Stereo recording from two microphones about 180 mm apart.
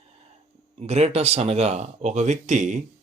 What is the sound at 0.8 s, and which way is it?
Speech, 35° right (ahead or behind).